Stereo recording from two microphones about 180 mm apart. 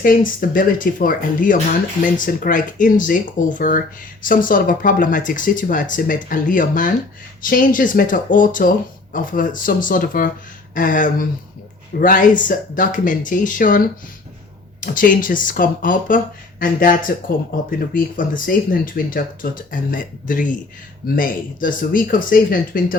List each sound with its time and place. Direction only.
0.0 s speech: 50° left (ahead or behind)